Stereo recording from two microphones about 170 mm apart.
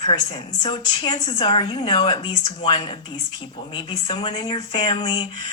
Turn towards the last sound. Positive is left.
turn(degrees=25)  # may be behind; listen again after turning